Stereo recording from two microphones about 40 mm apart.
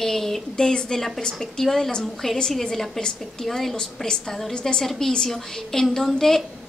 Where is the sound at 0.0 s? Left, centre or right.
Centre.